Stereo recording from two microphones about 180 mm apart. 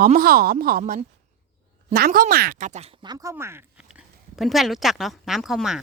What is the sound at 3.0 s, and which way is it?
Speech, 20° right (ahead or behind).